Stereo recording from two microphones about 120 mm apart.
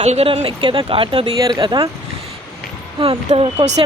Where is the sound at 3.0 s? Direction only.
50° right (ahead or behind).